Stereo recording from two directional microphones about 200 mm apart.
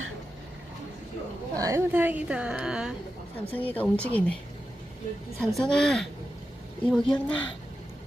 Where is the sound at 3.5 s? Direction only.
10° left (ahead or behind).